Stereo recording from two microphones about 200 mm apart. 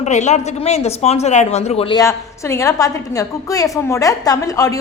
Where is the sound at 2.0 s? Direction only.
15° left (ahead or behind).